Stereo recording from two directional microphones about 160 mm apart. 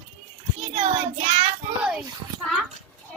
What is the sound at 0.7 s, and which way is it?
Child singing, 40° right (ahead or behind).